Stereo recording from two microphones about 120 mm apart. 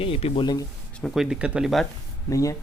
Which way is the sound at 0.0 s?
55° left (ahead or behind).